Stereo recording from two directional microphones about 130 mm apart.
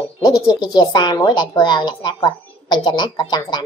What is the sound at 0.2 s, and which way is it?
Speech, 35° left (ahead or behind).